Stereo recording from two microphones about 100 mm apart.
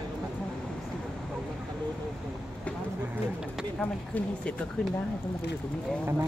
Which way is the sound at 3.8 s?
15° left (ahead or behind).